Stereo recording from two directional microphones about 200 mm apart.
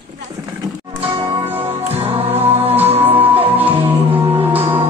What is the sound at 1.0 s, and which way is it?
Music, 25° right (ahead or behind).